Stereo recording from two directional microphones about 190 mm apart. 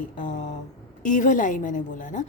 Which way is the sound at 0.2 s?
40° left (ahead or behind).